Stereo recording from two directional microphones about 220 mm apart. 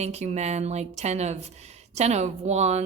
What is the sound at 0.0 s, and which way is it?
A woman's voice, 30° right (ahead or behind).